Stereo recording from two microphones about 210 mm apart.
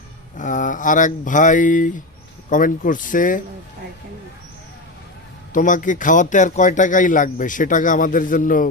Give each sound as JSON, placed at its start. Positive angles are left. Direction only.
{"t": 0.3, "sound": "a man's voice", "side_deg": 40}
{"t": 5.5, "sound": "a man's voice", "side_deg": 40}